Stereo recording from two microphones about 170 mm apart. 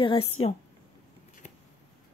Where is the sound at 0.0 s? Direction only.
30° left (ahead or behind).